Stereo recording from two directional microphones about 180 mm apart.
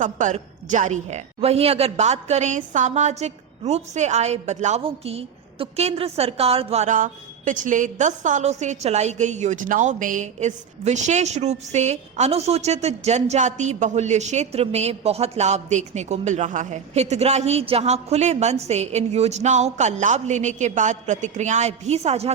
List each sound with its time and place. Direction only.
0.0 s a woman's voice: 45° right (ahead or behind)